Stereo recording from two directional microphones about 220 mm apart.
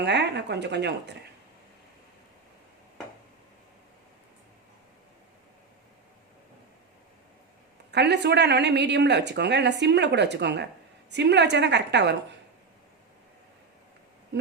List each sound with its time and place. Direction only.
0.0 s speech: 50° right (ahead or behind)
7.9 s speech: 50° right (ahead or behind)